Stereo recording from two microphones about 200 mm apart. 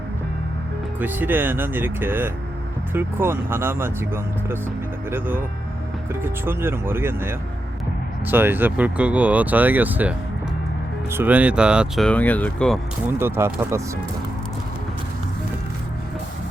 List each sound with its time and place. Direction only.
0.9 s speech: 10° right (ahead or behind)
13.1 s speech: 10° right (ahead or behind)